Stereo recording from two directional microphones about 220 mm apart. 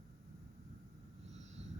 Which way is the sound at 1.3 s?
30° right (ahead or behind).